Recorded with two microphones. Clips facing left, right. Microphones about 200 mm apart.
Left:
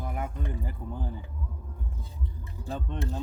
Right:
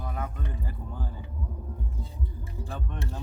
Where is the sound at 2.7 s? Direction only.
20° left (ahead or behind).